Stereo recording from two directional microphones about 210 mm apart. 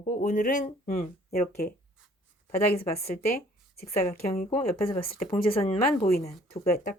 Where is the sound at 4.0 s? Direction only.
30° left (ahead or behind).